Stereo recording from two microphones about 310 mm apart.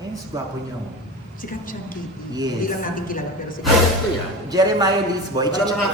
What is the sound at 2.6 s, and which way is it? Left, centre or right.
Speech, left.